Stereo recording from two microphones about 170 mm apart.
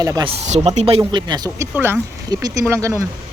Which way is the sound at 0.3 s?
40° right (ahead or behind).